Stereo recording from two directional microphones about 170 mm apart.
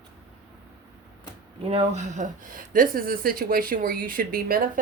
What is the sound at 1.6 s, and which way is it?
Speech, 35° right (ahead or behind).